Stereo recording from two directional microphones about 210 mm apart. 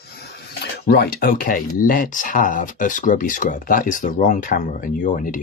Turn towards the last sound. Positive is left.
turn(degrees=40)  # may be behind; listen again after turning